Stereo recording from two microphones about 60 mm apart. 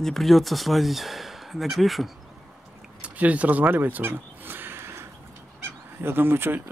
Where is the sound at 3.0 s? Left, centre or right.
Right.